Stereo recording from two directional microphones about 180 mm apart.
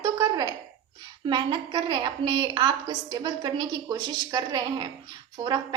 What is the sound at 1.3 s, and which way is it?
Speech, 25° right (ahead or behind).